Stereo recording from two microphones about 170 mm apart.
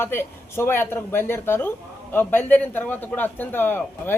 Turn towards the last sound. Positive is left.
turn(degrees=10)  # may be behind; listen again after turning